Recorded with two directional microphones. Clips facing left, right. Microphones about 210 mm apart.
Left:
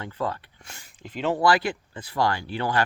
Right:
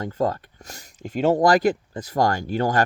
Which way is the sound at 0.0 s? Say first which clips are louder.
Right 6 dB; 40° right (ahead or behind).